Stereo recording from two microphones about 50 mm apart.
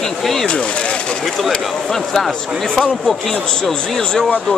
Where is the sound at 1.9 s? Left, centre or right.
Centre.